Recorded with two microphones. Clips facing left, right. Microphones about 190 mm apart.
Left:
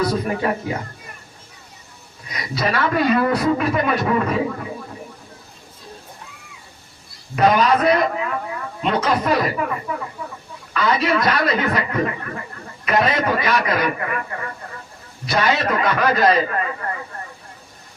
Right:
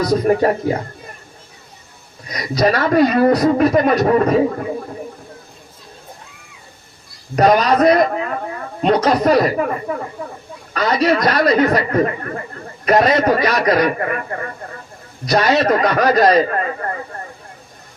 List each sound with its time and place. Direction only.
0.0 s a man's voice: 40° right (ahead or behind)
2.3 s a man's voice: 40° right (ahead or behind)
7.3 s a man's voice: 40° right (ahead or behind)